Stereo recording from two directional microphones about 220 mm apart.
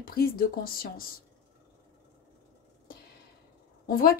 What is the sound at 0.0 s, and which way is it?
Speech, 40° left (ahead or behind).